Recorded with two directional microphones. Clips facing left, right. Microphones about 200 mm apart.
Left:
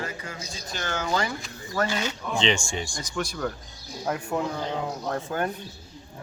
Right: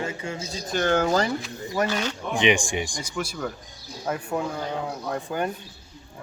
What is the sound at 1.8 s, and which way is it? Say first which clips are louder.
Speech: right 2 dB; 10° left (ahead or behind).